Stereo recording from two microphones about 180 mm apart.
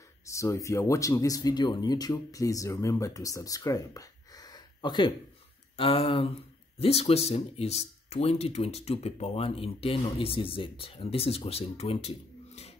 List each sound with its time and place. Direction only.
0.2 s speech: 15° left (ahead or behind); by 12.1 s 35° left (ahead or behind)